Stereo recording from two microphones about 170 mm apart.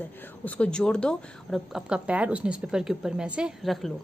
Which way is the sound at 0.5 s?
5° left (ahead or behind).